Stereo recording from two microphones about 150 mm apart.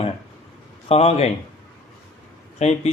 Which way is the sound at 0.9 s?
45° left (ahead or behind).